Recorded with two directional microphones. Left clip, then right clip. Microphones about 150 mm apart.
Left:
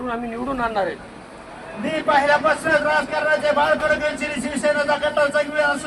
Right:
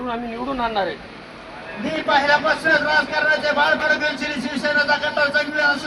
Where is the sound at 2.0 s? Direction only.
15° left (ahead or behind).